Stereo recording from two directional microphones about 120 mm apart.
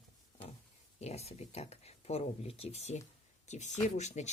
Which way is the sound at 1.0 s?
60° left (ahead or behind).